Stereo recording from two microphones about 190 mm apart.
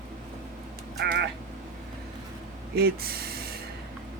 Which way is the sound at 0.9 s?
60° right (ahead or behind).